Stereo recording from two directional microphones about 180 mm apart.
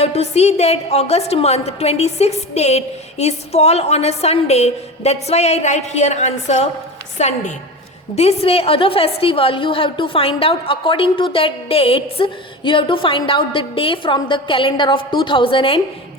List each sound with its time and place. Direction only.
0.0 s a woman's voice: 35° left (ahead or behind)